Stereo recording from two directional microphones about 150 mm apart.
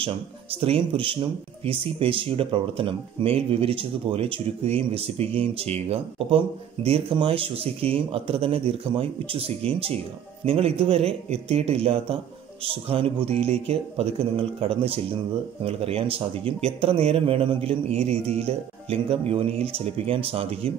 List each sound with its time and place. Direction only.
0.0 s speech: 40° right (ahead or behind)